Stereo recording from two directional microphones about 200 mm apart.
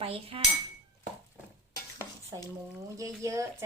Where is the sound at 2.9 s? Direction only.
15° right (ahead or behind).